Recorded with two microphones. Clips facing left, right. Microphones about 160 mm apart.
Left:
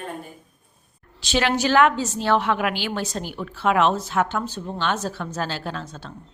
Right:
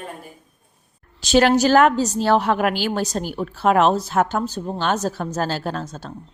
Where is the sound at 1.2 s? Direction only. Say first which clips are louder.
Right 7 dB; 40° right (ahead or behind).